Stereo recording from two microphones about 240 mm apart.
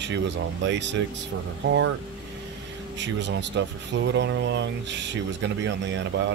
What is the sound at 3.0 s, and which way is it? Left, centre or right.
Speech, right.